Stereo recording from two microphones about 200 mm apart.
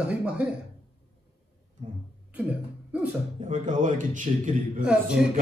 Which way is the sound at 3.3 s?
35° right (ahead or behind).